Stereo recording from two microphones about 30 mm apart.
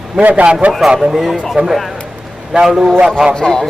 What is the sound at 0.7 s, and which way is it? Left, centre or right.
Speech, centre.